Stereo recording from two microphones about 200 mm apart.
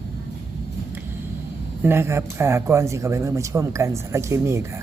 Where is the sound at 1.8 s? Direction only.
10° right (ahead or behind).